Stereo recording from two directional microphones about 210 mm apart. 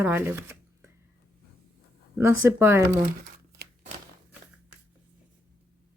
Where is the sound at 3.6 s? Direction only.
50° right (ahead or behind).